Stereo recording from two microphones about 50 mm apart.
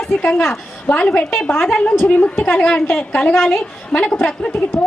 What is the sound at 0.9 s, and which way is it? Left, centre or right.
Speech, centre.